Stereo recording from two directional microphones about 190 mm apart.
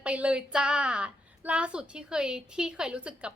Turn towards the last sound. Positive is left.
turn(degrees=-5)  # may be behind; listen again after turning